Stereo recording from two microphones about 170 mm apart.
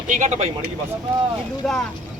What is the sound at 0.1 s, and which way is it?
Speech, 45° right (ahead or behind).